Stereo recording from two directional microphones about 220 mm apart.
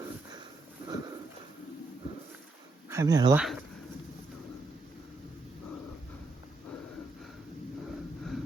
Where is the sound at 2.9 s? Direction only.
15° right (ahead or behind).